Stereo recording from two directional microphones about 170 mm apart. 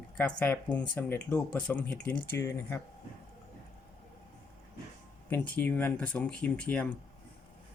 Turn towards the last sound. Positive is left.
turn(degrees=10)  # may be behind; listen again after turning